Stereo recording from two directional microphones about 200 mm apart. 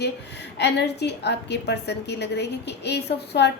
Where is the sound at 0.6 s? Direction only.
55° left (ahead or behind).